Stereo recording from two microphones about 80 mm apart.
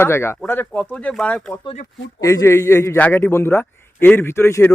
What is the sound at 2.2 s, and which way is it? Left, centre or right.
Speech, left.